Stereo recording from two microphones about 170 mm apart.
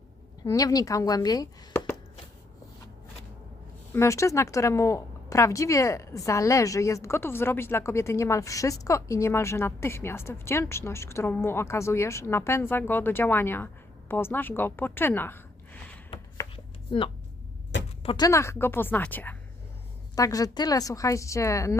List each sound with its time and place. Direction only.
0.4 s a woman's voice: 20° left (ahead or behind)
3.9 s a woman's voice: 15° left (ahead or behind)
16.9 s a woman's voice: 30° left (ahead or behind)
18.3 s speech: 15° left (ahead or behind)
20.1 s a woman's voice: 20° left (ahead or behind)